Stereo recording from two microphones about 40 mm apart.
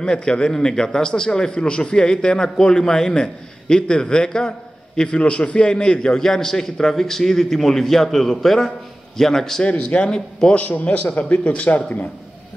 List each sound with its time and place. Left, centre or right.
0.0 s a man's voice: left
9.7 s a man's voice: left
10.5 s speech: left